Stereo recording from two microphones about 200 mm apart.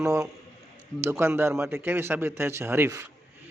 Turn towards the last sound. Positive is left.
turn(degrees=-10)  # may be behind; listen again after turning